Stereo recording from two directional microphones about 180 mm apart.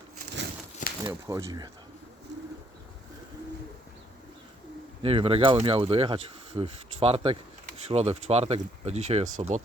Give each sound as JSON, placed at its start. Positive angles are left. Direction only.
{"t": 1.0, "sound": "speech", "side_deg": -15}
{"t": 5.0, "sound": "speech", "side_deg": -30}